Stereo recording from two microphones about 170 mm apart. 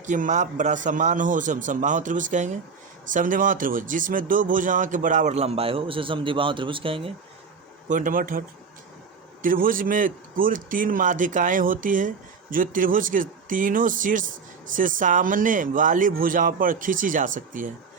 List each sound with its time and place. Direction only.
0.0 s a man's voice: 45° right (ahead or behind); by 7.1 s 30° right (ahead or behind)
7.9 s a man's voice: 50° right (ahead or behind)